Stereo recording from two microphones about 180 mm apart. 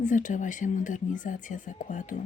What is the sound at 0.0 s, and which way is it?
Speech, 45° left (ahead or behind).